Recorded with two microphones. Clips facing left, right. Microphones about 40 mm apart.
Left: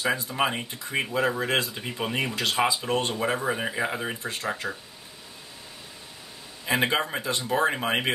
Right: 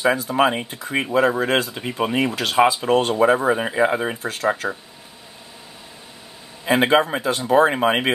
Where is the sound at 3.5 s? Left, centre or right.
Right.